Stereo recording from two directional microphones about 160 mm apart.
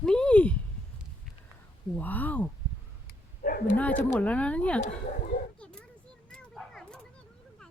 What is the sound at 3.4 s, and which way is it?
Dog, 65° left (ahead or behind).